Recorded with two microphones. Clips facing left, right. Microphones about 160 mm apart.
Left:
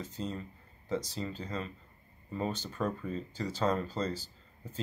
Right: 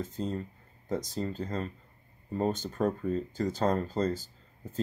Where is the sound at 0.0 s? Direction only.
50° right (ahead or behind).